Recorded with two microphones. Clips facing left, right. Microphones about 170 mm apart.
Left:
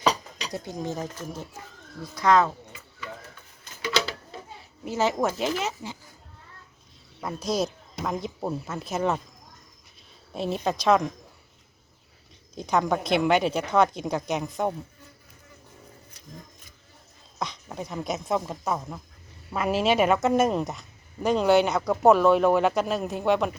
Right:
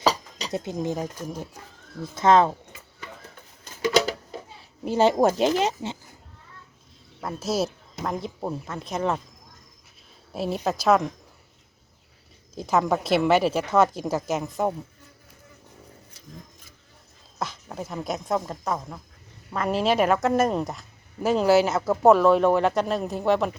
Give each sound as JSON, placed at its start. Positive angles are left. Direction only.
{"t": 0.5, "sound": "speech", "side_deg": -20}
{"t": 2.1, "sound": "speech", "side_deg": -25}
{"t": 3.8, "sound": "a sound", "side_deg": -45}
{"t": 4.9, "sound": "speech", "side_deg": -30}
{"t": 7.2, "sound": "a woman's voice", "side_deg": 0}
{"t": 10.3, "sound": "a woman's voice", "side_deg": 0}
{"t": 12.5, "sound": "a woman's voice", "side_deg": -5}
{"t": 17.4, "sound": "a woman's voice", "side_deg": 0}